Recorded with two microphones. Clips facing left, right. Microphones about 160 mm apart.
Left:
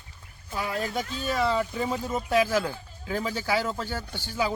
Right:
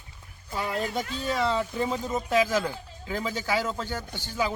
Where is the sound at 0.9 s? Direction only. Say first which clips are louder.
Even; centre (ahead or behind).